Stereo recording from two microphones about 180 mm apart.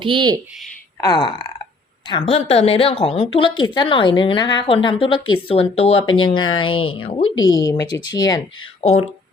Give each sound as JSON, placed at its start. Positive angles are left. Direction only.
{"t": 0.0, "sound": "speech", "side_deg": -25}
{"t": 1.0, "sound": "a woman's voice", "side_deg": 25}
{"t": 7.6, "sound": "a woman's voice", "side_deg": 20}